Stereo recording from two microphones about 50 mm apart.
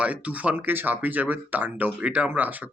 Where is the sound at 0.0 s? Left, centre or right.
Right.